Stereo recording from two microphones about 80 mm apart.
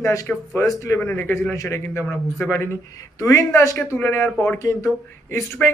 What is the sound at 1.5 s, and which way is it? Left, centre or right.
Speech, left.